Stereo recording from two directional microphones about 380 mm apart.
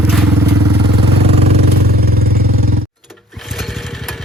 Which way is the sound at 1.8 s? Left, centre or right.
Right.